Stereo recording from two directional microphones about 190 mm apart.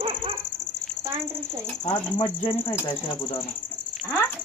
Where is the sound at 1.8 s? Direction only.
25° left (ahead or behind).